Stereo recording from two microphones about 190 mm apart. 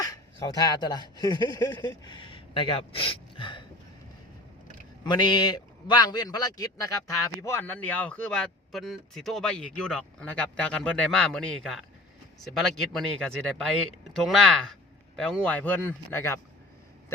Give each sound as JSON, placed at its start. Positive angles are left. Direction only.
{"t": 0.0, "sound": "speech", "side_deg": 20}
{"t": 5.0, "sound": "a man's voice", "side_deg": 25}
{"t": 13.0, "sound": "speech", "side_deg": 0}